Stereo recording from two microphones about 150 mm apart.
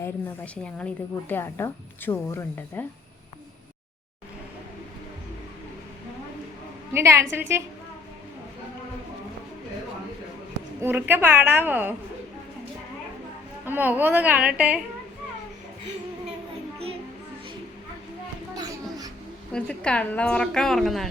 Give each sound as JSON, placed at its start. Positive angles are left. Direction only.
{"t": 0.0, "sound": "a woman's voice", "side_deg": 10}
{"t": 6.9, "sound": "a woman's voice", "side_deg": -20}
{"t": 10.8, "sound": "a woman's voice", "side_deg": -15}
{"t": 13.7, "sound": "a woman's voice", "side_deg": -10}
{"t": 18.5, "sound": "mouse", "side_deg": -25}
{"t": 19.5, "sound": "a woman's voice", "side_deg": 5}